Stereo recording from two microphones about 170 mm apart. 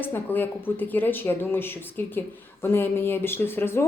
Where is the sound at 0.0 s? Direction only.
10° left (ahead or behind).